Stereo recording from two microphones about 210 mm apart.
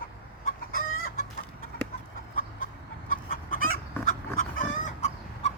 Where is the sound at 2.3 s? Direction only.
40° left (ahead or behind).